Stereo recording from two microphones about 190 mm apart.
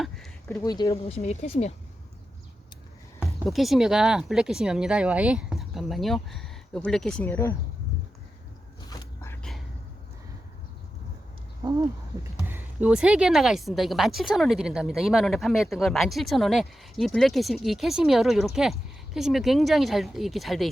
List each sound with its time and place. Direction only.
0.0 s a sound: centre (ahead or behind)
0.5 s speech: 20° left (ahead or behind)
1.0 s speech: 35° left (ahead or behind)
3.4 s a woman's voice: centre (ahead or behind)
8.9 s dog: 15° left (ahead or behind)
11.6 s owl: 20° right (ahead or behind)
12.4 s a woman's voice: 10° right (ahead or behind)